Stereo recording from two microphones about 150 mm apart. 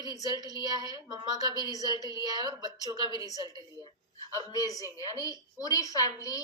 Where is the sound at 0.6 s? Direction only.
25° right (ahead or behind).